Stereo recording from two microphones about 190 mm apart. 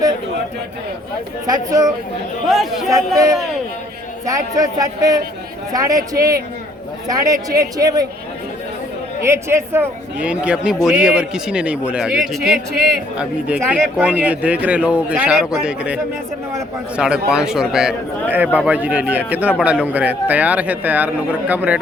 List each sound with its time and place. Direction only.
1.5 s a man's voice: 20° right (ahead or behind)
2.5 s a man's voice: centre (ahead or behind)
4.3 s a man's voice: 20° right (ahead or behind)
9.2 s a man's voice: 15° right (ahead or behind)
17.0 s a man's voice: 5° right (ahead or behind)